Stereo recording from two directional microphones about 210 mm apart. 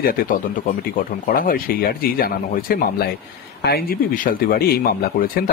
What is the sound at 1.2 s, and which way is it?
Speech, 40° left (ahead or behind).